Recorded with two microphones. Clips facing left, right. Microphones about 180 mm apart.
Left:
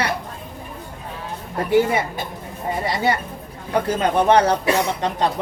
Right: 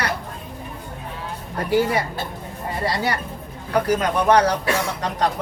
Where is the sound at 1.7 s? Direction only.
25° left (ahead or behind).